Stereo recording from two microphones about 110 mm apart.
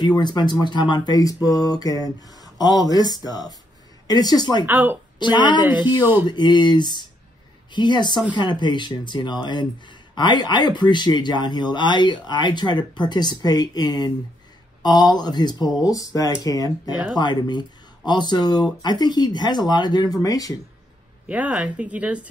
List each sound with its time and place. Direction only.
0.0 s speech: 40° left (ahead or behind)
4.6 s speech: 15° right (ahead or behind)
5.2 s speech: 45° left (ahead or behind)
5.7 s speech: 15° right (ahead or behind)
6.2 s speech: 45° left (ahead or behind)
21.3 s speech: 10° right (ahead or behind)